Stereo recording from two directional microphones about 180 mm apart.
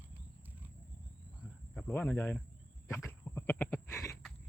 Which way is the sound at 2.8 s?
10° left (ahead or behind).